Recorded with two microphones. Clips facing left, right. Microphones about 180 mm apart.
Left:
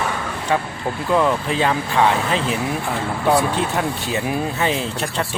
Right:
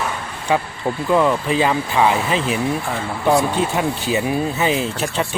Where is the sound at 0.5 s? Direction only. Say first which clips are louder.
Right 3 dB; 10° right (ahead or behind).